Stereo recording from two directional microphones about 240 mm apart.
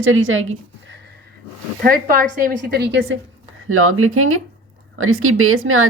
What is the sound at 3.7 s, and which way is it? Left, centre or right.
Speech, right.